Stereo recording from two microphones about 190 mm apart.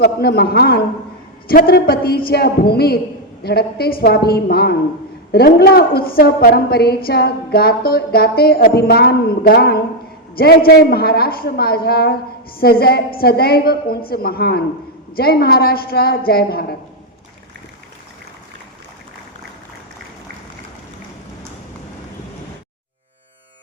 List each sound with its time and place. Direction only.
0.0 s a woman's voice: 55° left (ahead or behind)